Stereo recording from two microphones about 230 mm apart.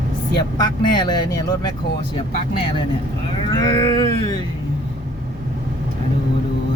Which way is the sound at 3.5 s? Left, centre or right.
Left.